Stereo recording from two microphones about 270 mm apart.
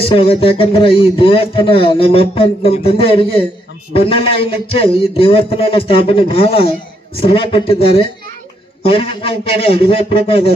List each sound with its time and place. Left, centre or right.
0.1 s a man's voice: centre